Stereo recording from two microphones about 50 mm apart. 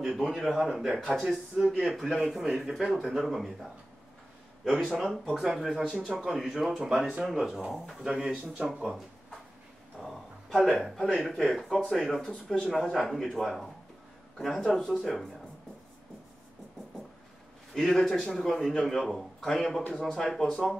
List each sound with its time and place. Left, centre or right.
0.0 s a man's voice: centre
5.4 s a man's voice: centre
8.0 s speech: centre
9.9 s a sound: centre
11.1 s a man's voice: centre
17.7 s a man's voice: centre